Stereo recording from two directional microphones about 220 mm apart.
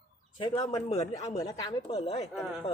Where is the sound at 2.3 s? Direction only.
Centre (ahead or behind).